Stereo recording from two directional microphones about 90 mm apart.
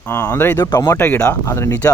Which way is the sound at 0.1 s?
25° left (ahead or behind).